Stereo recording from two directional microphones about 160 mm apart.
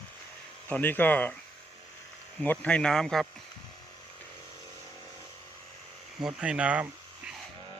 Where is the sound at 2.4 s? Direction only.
10° left (ahead or behind).